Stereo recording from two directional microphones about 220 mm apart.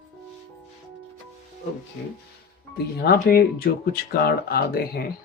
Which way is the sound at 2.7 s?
45° left (ahead or behind).